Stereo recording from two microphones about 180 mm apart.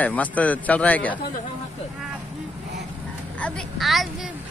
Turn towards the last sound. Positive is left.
turn(degrees=0)  # may be behind; listen again after turning